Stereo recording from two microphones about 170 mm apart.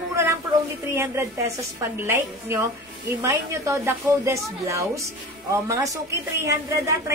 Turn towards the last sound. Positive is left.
turn(degrees=-15)  # may be behind; listen again after turning